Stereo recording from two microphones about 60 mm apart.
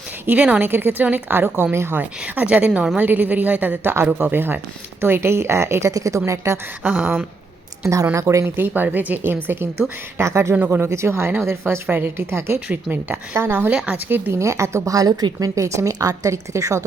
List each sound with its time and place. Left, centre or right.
0.3 s a woman's voice: right
0.6 s a woman's voice: right
2.0 s a woman's voice: right
5.9 s a woman's voice: right
6.8 s a woman's voice: right
8.1 s a woman's voice: right
8.4 s a woman's voice: right
10.2 s speech: right
12.6 s a woman's voice: right
14.3 s a woman's voice: right
16.3 s a woman's voice: right